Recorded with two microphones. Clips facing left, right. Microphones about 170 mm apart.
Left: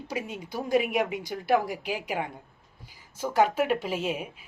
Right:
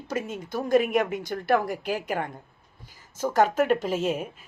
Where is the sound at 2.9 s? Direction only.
45° right (ahead or behind).